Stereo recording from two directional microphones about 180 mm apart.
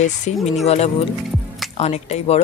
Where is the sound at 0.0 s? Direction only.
40° left (ahead or behind).